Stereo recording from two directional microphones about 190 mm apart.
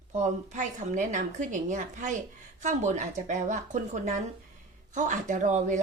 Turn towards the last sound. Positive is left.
turn(degrees=-40)  # may be behind; listen again after turning